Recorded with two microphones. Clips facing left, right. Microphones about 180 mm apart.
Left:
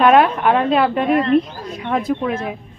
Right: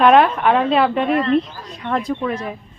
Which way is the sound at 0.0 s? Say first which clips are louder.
Even; centre (ahead or behind).